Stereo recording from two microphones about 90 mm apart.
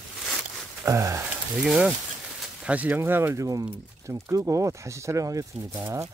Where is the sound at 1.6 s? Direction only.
10° right (ahead or behind); by 5.4 s 40° right (ahead or behind).